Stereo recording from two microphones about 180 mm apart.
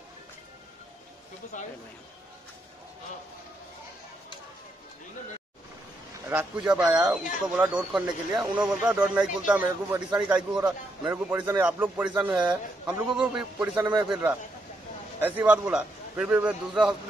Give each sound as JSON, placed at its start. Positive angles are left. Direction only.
{"t": 1.5, "sound": "a man's voice", "side_deg": 45}
{"t": 6.3, "sound": "a man's voice", "side_deg": -5}